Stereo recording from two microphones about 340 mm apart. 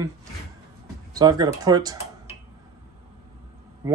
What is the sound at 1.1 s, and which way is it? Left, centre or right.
Speech, centre.